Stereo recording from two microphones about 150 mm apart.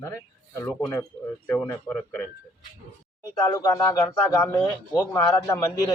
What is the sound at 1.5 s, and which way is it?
Speech, 10° left (ahead or behind).